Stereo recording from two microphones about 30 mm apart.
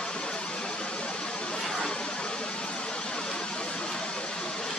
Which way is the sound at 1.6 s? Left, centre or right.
Centre.